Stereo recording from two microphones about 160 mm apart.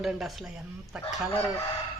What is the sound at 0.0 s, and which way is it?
Speech, centre (ahead or behind).